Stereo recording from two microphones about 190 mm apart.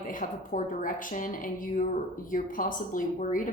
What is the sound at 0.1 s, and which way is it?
A woman's voice, 45° left (ahead or behind).